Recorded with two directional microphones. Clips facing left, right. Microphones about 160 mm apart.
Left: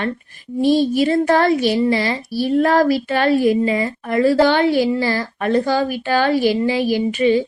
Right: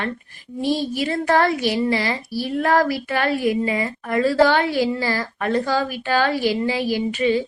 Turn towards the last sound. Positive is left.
turn(degrees=25)  # may be behind; listen again after turning